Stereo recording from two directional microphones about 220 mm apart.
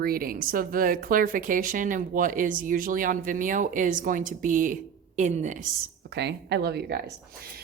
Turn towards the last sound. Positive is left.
turn(degrees=-50)  # may be behind; listen again after turning